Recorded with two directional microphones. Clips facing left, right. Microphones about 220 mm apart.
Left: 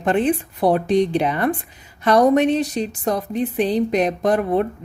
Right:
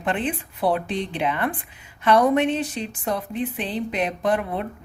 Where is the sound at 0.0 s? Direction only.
40° left (ahead or behind).